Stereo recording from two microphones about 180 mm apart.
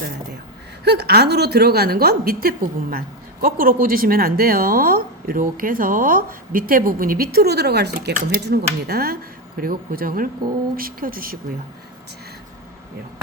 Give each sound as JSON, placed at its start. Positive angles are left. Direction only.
{"t": 0.9, "sound": "a woman's voice", "side_deg": -65}